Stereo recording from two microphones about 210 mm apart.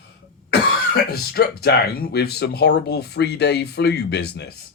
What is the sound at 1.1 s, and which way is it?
Speech, 50° left (ahead or behind).